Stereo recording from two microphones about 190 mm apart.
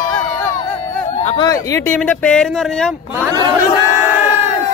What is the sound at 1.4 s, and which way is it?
Speech, 15° left (ahead or behind).